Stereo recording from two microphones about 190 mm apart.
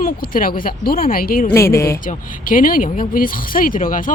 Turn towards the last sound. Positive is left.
turn(degrees=45)  # may be behind; listen again after turning